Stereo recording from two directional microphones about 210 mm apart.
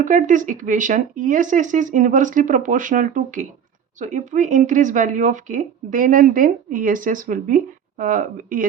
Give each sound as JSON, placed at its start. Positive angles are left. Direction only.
{"t": 0.0, "sound": "speech", "side_deg": -35}